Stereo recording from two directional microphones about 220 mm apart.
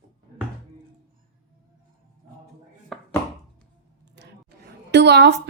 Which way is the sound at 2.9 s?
Centre (ahead or behind).